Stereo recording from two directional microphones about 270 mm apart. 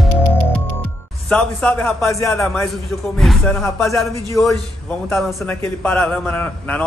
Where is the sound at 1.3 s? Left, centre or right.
Centre.